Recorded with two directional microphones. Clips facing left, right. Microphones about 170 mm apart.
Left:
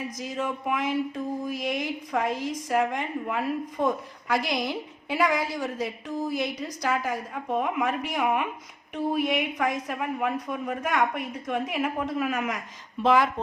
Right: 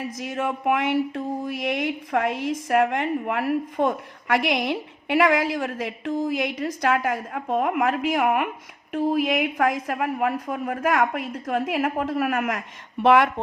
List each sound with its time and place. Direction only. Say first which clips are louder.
0.3 s a woman's voice: right 6 dB; 70° right (ahead or behind)
2.1 s a woman's voice: right 3 dB; 60° right (ahead or behind); by 6.3 s 90° right
6.8 s a woman's voice: right 4 dB; 70° right (ahead or behind)